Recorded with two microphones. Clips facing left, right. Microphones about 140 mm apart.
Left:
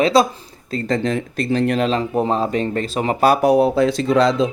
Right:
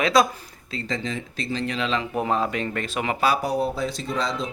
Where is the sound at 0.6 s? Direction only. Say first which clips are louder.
Left 9 dB; 50° left (ahead or behind); by 3.1 s 35° left (ahead or behind).